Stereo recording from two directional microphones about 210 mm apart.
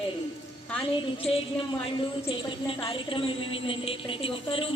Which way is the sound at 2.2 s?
25° left (ahead or behind).